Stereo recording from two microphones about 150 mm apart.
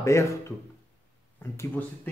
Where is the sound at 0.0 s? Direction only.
20° left (ahead or behind).